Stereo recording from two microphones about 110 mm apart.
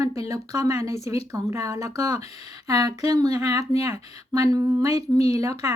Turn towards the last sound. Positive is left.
turn(degrees=-30)  # may be behind; listen again after turning